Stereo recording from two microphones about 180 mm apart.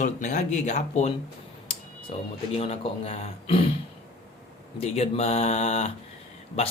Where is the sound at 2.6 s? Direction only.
35° left (ahead or behind).